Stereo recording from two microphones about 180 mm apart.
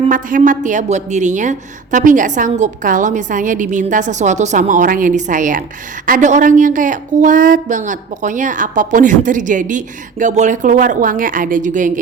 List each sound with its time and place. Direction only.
0.1 s a woman's voice: 45° right (ahead or behind)